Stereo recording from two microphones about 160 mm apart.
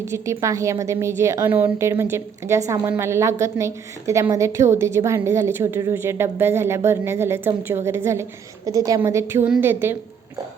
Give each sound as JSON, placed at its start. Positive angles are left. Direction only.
{"t": 0.1, "sound": "a woman's voice", "side_deg": -20}